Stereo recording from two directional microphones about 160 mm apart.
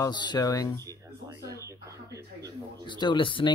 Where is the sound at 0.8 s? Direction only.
20° right (ahead or behind).